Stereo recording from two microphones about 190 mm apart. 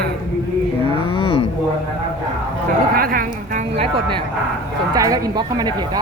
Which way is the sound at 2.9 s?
50° right (ahead or behind).